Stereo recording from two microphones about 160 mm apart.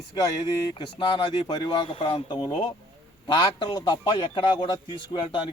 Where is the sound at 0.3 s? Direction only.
30° left (ahead or behind).